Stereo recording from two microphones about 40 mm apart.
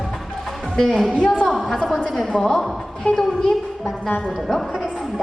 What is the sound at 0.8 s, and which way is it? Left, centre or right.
A woman's voice, centre.